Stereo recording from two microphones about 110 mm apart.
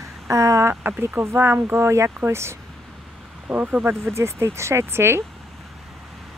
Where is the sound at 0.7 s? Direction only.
15° right (ahead or behind).